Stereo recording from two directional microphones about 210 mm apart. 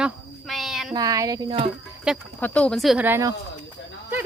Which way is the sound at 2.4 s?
5° left (ahead or behind).